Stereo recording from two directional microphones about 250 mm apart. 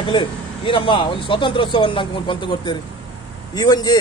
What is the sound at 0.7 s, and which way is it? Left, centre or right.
Speech, left.